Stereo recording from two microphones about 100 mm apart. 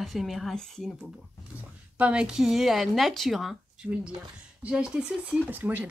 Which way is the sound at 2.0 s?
10° right (ahead or behind).